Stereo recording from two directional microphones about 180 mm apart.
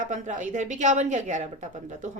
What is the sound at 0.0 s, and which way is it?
A woman's voice, 40° right (ahead or behind).